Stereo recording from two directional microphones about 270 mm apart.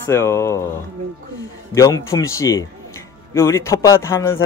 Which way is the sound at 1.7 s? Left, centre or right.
Centre.